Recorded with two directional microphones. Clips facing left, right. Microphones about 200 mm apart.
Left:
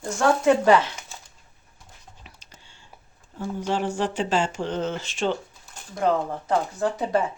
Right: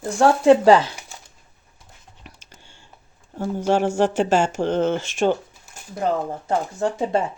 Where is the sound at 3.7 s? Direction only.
45° right (ahead or behind).